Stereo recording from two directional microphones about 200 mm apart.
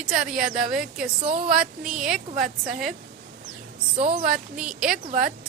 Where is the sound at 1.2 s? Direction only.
30° right (ahead or behind).